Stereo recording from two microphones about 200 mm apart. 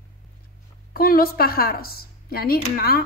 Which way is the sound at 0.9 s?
45° left (ahead or behind).